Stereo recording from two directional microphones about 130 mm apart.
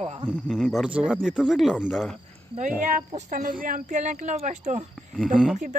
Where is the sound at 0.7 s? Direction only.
10° right (ahead or behind).